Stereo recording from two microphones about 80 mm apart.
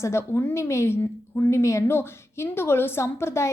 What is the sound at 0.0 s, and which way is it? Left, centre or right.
A woman's voice, left.